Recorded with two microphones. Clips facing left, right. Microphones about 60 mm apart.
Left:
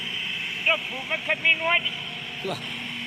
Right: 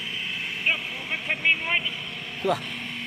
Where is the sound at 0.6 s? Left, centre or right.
Centre.